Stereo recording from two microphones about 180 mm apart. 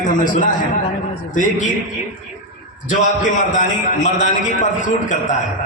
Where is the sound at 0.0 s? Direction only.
45° left (ahead or behind).